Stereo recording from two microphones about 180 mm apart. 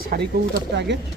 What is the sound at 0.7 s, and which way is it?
Speech, 75° right (ahead or behind).